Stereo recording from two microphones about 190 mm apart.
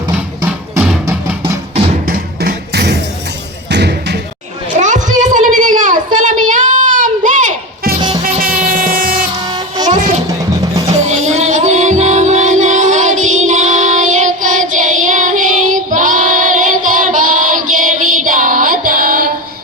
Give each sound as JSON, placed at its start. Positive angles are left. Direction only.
{"t": 0.4, "sound": "music", "side_deg": -5}
{"t": 1.7, "sound": "music", "side_deg": -35}
{"t": 3.7, "sound": "slam", "side_deg": -65}
{"t": 4.8, "sound": "a sound", "side_deg": -40}
{"t": 8.2, "sound": "train", "side_deg": -50}
{"t": 9.8, "sound": "music", "side_deg": -20}
{"t": 11.1, "sound": "music", "side_deg": -35}